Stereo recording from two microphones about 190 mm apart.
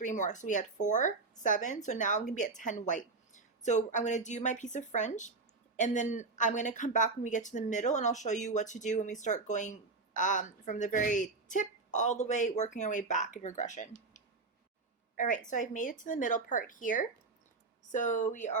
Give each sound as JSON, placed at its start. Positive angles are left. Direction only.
{"t": 0.0, "sound": "a woman's voice", "side_deg": 40}